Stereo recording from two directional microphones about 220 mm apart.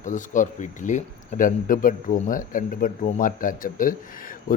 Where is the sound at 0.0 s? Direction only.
35° left (ahead or behind).